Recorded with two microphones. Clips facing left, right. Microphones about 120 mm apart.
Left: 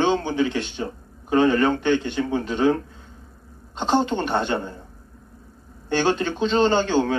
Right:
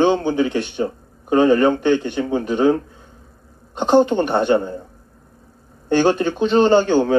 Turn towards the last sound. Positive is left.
turn(degrees=-15)  # may be behind; listen again after turning